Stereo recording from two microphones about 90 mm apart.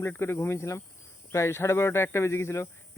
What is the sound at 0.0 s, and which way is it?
Speech, 25° left (ahead or behind).